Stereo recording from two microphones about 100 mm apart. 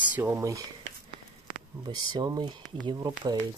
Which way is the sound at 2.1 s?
45° right (ahead or behind).